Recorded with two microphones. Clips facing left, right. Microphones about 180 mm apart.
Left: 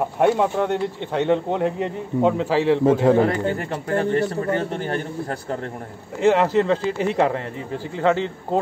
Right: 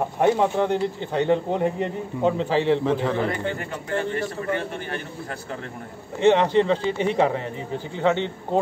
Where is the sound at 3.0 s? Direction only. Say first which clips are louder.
Left 7 dB; 45° left (ahead or behind).